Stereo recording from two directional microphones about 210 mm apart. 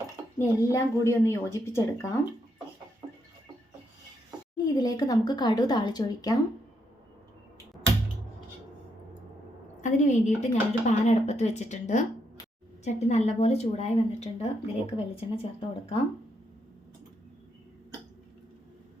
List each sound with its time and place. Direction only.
0.3 s a woman's voice: 10° left (ahead or behind)
4.5 s speech: 20° left (ahead or behind)
9.8 s speech: 35° left (ahead or behind)